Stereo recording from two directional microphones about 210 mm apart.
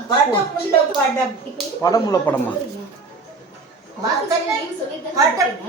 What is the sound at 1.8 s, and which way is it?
Speech, 15° left (ahead or behind).